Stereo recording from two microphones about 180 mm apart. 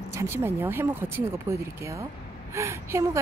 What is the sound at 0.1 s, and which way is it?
Speech, 15° right (ahead or behind).